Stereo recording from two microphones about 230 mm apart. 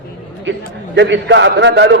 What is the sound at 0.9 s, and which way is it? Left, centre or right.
A man's voice, right.